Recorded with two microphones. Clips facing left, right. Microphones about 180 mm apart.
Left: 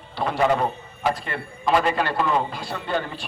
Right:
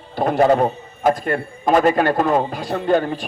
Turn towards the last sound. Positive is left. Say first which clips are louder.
# right 9 dB
turn(degrees=-45)  # may be behind; listen again after turning